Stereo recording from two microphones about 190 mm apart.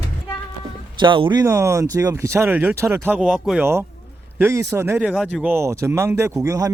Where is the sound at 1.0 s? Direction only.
25° right (ahead or behind).